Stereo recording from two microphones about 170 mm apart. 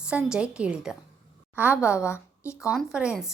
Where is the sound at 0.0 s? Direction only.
5° right (ahead or behind).